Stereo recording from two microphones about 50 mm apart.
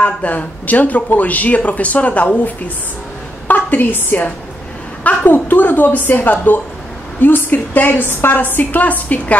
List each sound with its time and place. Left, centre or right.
0.0 s a woman's voice: left
8.1 s a woman's voice: left
8.4 s speech: left